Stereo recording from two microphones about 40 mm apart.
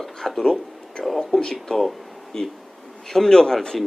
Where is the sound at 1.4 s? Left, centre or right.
Centre.